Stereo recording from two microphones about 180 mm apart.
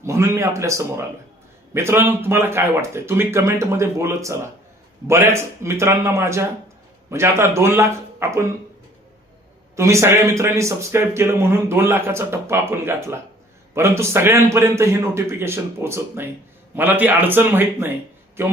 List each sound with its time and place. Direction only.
0.0 s speech: 15° right (ahead or behind)
9.7 s speech: 15° right (ahead or behind)